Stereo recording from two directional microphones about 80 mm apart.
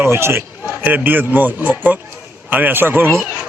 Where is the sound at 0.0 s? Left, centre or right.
Right.